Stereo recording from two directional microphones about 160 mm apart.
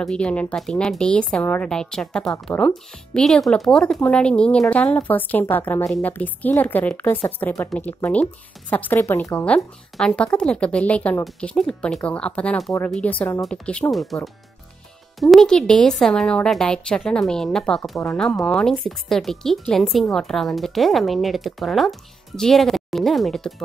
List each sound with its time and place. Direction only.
0.0 s speech: 5° left (ahead or behind)